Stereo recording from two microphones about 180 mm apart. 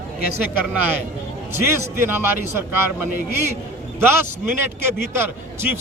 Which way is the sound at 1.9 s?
15° right (ahead or behind).